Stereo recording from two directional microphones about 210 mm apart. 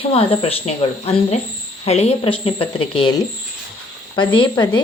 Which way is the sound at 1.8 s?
30° left (ahead or behind).